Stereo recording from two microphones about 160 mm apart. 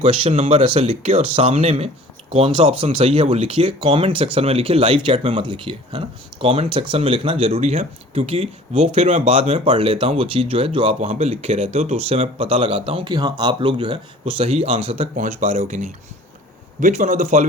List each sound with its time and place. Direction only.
0.0 s speech: 40° right (ahead or behind)
15.1 s speech: 50° right (ahead or behind)